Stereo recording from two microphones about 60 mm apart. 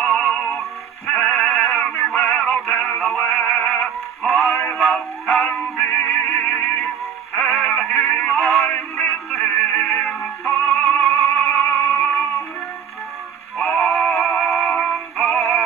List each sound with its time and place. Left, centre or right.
0.0 s synthetic singing: centre
1.0 s music: centre
1.7 s synthetic singing: left
2.1 s music: left
2.4 s music: centre
3.3 s music: left
4.2 s music: centre
5.8 s music: left
8.4 s music: centre
8.6 s synthetic singing: left
10.8 s music: left
13.6 s synthetic singing: centre